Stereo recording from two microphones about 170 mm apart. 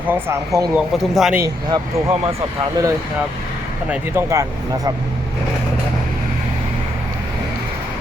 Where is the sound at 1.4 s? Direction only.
15° right (ahead or behind).